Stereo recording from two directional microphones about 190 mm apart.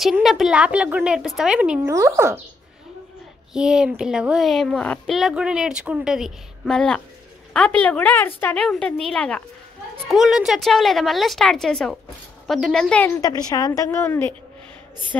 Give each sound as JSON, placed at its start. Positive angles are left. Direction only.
{"t": 0.0, "sound": "a woman's voice", "side_deg": 0}
{"t": 1.8, "sound": "speech", "side_deg": -15}
{"t": 3.5, "sound": "a woman's voice", "side_deg": -5}
{"t": 13.2, "sound": "a woman's voice", "side_deg": 20}